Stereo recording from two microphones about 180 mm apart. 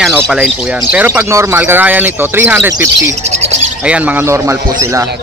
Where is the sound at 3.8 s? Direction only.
5° right (ahead or behind).